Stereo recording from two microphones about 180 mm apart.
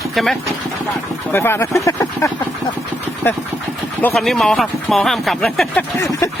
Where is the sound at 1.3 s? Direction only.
10° left (ahead or behind).